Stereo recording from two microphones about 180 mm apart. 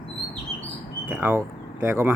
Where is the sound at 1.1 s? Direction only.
10° right (ahead or behind).